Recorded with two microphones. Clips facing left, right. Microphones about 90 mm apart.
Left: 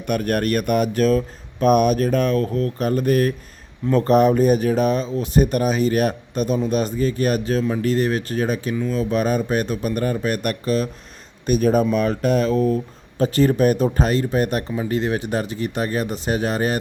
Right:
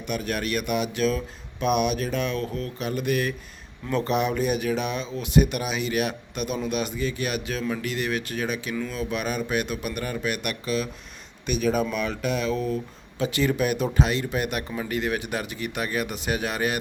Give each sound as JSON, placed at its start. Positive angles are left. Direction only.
{"t": 0.1, "sound": "speech", "side_deg": 50}